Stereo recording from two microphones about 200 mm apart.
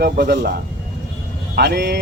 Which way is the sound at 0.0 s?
60° right (ahead or behind).